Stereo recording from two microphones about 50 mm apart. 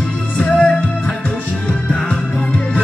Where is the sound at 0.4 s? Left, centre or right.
Left.